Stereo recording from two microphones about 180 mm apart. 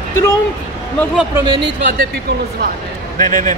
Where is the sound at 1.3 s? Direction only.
25° right (ahead or behind).